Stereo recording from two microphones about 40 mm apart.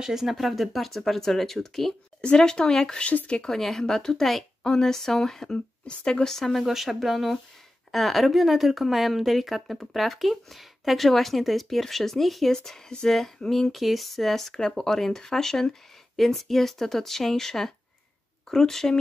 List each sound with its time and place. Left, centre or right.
0.0 s a woman's voice: centre
2.2 s speech: left
3.0 s speech: left
3.5 s speech: centre
5.9 s speech: left
6.2 s speech: centre
6.6 s a woman's voice: centre